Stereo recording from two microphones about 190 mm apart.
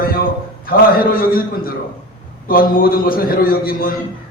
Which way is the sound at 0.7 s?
50° left (ahead or behind).